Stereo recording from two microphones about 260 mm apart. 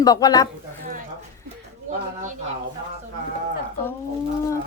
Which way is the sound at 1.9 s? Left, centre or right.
Right.